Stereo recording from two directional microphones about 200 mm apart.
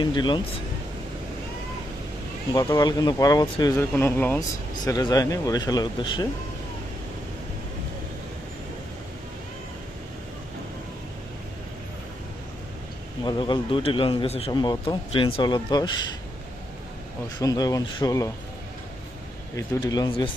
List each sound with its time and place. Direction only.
0.0 s speech: 20° left (ahead or behind)
2.5 s speech: 20° left (ahead or behind)
13.2 s speech: 25° left (ahead or behind)
17.4 s speech: 20° left (ahead or behind)
19.5 s speech: 15° left (ahead or behind)